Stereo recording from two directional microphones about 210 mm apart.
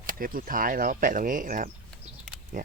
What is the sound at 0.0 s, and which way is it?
Speech, 40° right (ahead or behind).